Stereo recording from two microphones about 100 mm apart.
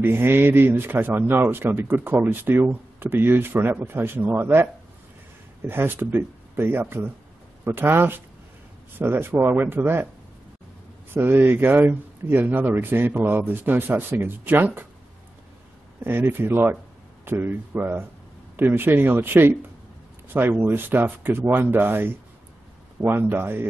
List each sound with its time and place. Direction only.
0.0 s speech: 25° right (ahead or behind)
5.7 s speech: 20° right (ahead or behind)
11.1 s speech: 20° right (ahead or behind)
16.0 s speech: 20° right (ahead or behind)